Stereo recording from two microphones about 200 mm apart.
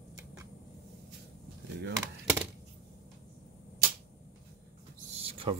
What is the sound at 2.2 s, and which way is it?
Typewriter, 5° right (ahead or behind).